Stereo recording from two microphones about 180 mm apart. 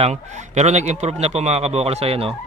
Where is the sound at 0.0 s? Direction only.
40° right (ahead or behind).